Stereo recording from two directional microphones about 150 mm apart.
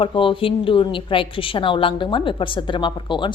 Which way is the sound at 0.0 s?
35° left (ahead or behind).